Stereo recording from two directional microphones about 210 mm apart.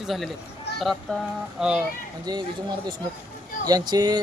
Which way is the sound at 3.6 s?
20° right (ahead or behind).